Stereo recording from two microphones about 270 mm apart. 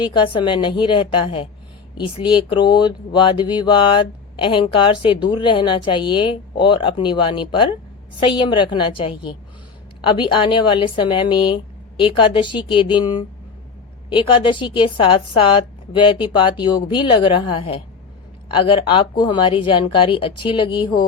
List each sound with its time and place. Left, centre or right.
0.0 s speech: centre